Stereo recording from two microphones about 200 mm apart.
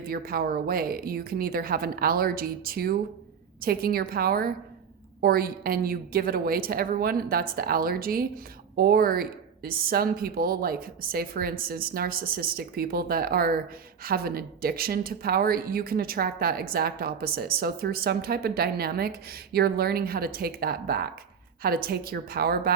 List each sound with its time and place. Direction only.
0.0 s a woman's voice: 50° right (ahead or behind)